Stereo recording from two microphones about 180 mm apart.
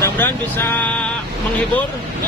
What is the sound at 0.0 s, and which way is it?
Speech, 10° left (ahead or behind).